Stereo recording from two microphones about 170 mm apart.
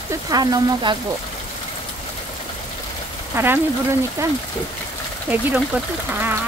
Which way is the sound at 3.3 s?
15° right (ahead or behind).